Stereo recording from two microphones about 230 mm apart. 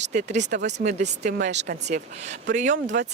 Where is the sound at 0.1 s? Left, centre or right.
Right.